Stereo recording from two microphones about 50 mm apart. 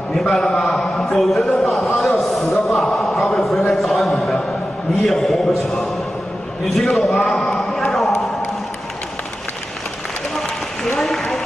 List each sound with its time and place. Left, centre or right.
0.1 s a man's voice: centre
1.0 s a man's voice: centre
2.0 s a sound: centre
3.4 s a man's voice: centre
6.6 s a man's voice: centre
11.0 s applause: centre